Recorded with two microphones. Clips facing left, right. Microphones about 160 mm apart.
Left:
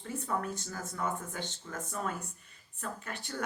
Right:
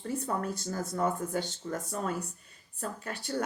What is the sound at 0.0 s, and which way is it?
Speech, 35° right (ahead or behind).